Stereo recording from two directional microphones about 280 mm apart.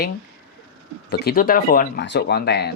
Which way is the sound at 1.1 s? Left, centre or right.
Left.